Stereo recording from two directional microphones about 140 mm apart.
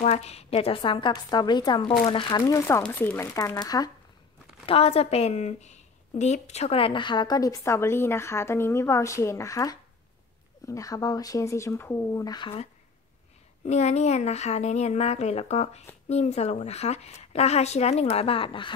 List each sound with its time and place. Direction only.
0.0 s a woman's voice: 50° left (ahead or behind); by 3.3 s 15° left (ahead or behind)
3.3 s a woman's voice: 25° left (ahead or behind)
4.6 s a woman's voice: 45° left (ahead or behind)
13.7 s a woman's voice: 55° left (ahead or behind)